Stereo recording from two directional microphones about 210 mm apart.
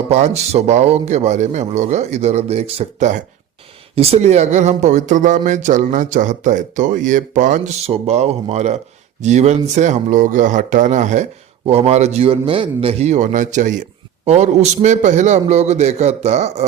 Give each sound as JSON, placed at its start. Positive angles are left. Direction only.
{"t": 0.1, "sound": "speech", "side_deg": -30}